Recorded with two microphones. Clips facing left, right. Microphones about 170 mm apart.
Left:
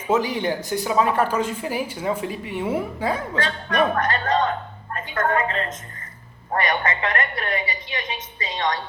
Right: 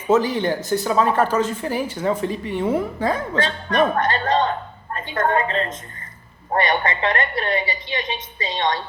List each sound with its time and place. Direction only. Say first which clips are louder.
0.1 s speech: right 3 dB; 10° left (ahead or behind)
3.4 s a woman's voice: right 2 dB; 30° right (ahead or behind)